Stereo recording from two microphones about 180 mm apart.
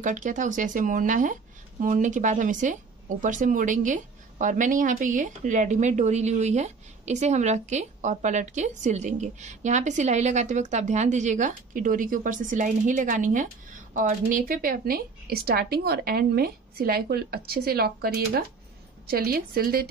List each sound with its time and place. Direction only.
0.0 s a woman's voice: 45° right (ahead or behind)